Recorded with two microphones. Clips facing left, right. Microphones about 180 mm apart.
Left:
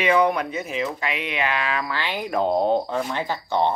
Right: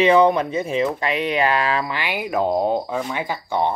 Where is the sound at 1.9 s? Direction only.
10° right (ahead or behind).